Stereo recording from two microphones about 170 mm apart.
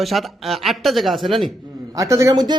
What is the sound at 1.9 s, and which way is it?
Speech, 20° right (ahead or behind).